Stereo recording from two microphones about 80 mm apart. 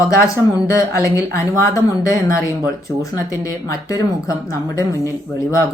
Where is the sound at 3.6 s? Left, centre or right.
Left.